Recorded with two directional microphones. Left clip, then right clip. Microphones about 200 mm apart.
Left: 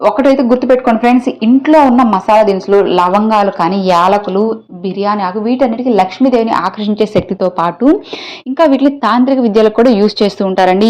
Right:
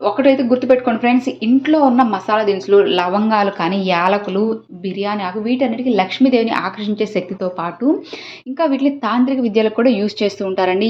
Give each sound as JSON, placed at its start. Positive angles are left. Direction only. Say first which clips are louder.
{"t": 0.2, "sound": "a woman's voice", "louder": "left 4 dB", "side_deg": 25}